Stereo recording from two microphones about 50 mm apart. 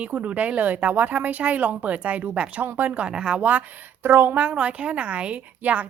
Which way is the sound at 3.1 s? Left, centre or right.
Centre.